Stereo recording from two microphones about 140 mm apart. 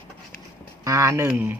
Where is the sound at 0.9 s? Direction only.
20° right (ahead or behind).